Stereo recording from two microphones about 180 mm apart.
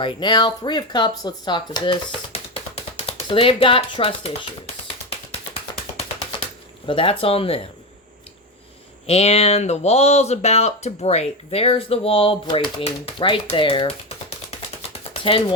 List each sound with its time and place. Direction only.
0.0 s speech: 25° left (ahead or behind)
3.1 s speech: 30° left (ahead or behind)
6.8 s speech: 30° left (ahead or behind)
9.0 s speech: 35° left (ahead or behind)